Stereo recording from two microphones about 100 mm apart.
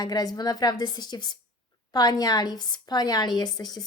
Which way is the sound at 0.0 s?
40° left (ahead or behind).